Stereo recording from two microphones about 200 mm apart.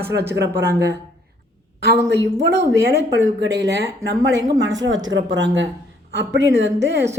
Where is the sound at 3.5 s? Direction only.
60° right (ahead or behind).